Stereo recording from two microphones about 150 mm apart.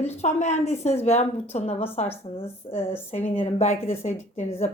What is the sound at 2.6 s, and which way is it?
A woman's voice, 30° left (ahead or behind).